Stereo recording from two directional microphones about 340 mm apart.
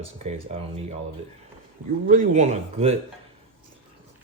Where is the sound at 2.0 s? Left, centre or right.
Right.